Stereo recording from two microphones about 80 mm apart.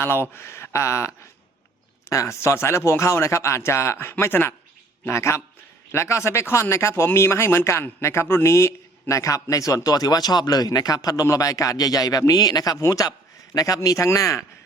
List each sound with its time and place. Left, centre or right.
0.0 s a man's voice: left